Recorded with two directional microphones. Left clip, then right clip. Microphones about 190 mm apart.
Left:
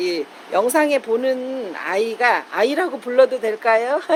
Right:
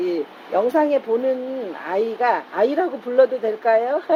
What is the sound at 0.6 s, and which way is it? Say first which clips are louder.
Speech: left 1 dB; 30° left (ahead or behind).